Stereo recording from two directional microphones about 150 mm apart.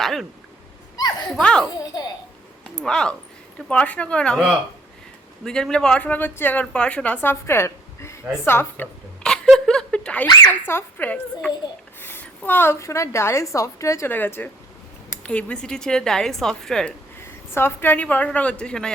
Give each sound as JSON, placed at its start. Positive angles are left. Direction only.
{"t": 0.0, "sound": "a sound", "side_deg": 0}
{"t": 0.9, "sound": "a sound", "side_deg": 25}
{"t": 1.3, "sound": "speech", "side_deg": 5}
{"t": 1.8, "sound": "a child's voice", "side_deg": 25}
{"t": 2.7, "sound": "a woman's voice", "side_deg": 5}
{"t": 5.5, "sound": "a woman's voice", "side_deg": 5}
{"t": 9.2, "sound": "a sound", "side_deg": 5}
{"t": 10.2, "sound": "a woman's voice", "side_deg": 15}
{"t": 17.2, "sound": "a woman's voice", "side_deg": 15}